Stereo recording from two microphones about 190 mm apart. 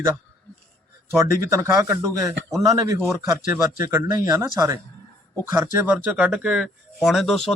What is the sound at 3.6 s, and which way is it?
Speech, 20° right (ahead or behind).